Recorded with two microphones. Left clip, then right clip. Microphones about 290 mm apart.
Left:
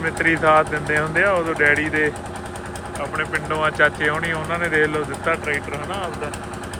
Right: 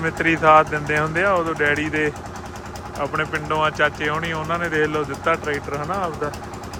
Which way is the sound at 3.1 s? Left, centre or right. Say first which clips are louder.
Even; centre.